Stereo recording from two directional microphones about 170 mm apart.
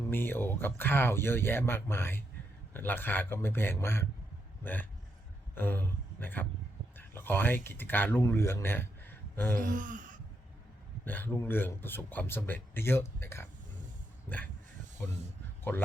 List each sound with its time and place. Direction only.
0.1 s speech: 10° left (ahead or behind)
9.6 s gasp: 50° right (ahead or behind)
11.0 s speech: 10° left (ahead or behind)